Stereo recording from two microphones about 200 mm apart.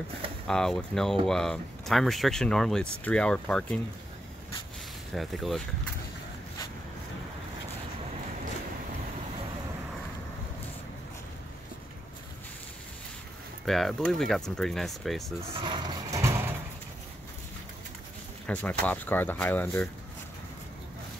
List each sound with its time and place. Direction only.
0.5 s speech: centre (ahead or behind)
5.1 s speech: centre (ahead or behind)
13.7 s speech: centre (ahead or behind)
15.5 s a sound: 25° right (ahead or behind)
18.5 s speech: 10° left (ahead or behind)